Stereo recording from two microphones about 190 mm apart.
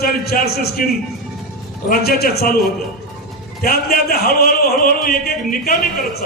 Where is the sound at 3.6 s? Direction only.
50° left (ahead or behind).